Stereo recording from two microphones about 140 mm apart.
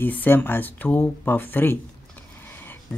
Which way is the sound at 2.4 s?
15° left (ahead or behind).